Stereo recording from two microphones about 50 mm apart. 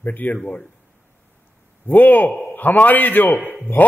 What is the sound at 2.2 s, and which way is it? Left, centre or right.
Speech, centre.